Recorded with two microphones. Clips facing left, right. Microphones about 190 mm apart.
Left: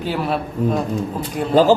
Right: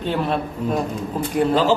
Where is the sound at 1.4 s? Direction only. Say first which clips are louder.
Right 6 dB; centre (ahead or behind).